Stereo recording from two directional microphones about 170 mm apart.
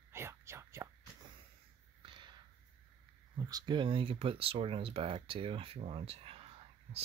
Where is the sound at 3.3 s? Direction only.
20° right (ahead or behind).